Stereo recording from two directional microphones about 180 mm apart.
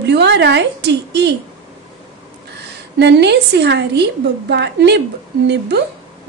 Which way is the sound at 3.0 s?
70° right (ahead or behind).